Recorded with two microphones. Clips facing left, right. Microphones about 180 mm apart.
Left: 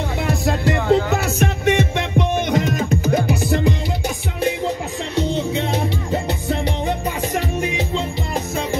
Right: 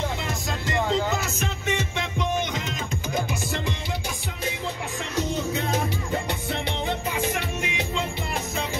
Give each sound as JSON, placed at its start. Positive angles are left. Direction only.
{"t": 0.3, "sound": "music", "side_deg": 65}
{"t": 5.1, "sound": "music", "side_deg": 30}